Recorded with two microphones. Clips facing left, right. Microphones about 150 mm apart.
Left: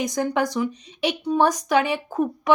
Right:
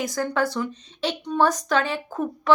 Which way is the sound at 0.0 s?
20° left (ahead or behind).